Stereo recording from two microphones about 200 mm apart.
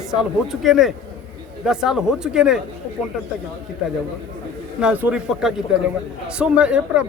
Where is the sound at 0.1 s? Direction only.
Centre (ahead or behind).